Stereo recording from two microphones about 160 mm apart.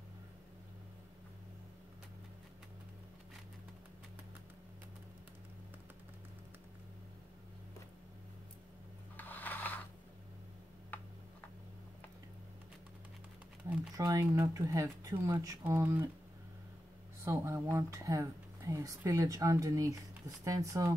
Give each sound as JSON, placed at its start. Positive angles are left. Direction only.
{"t": 9.1, "sound": "a sound", "side_deg": 10}
{"t": 13.9, "sound": "speech", "side_deg": -20}
{"t": 17.2, "sound": "speech", "side_deg": -15}